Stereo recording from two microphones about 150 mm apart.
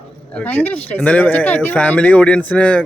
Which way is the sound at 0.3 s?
10° left (ahead or behind).